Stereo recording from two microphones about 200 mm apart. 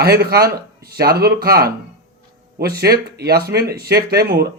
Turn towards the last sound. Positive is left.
turn(degrees=-55)  # may be behind; listen again after turning